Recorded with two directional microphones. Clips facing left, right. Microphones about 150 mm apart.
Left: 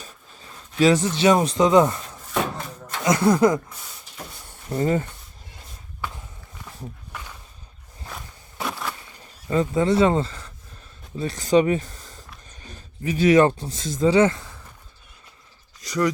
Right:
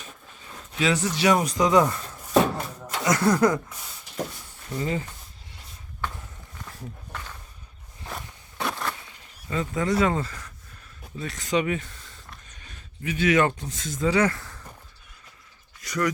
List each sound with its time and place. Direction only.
0.8 s speech: 30° left (ahead or behind)
3.0 s speech: 20° left (ahead or behind)
4.7 s speech: 45° left (ahead or behind)
6.0 s walk: 10° left (ahead or behind)
7.1 s a sound: 10° left (ahead or behind)
8.1 s walk: 5° left (ahead or behind)
9.1 s speech: 35° left (ahead or behind); by 14.6 s 15° left (ahead or behind)
15.8 s a sound: 30° left (ahead or behind)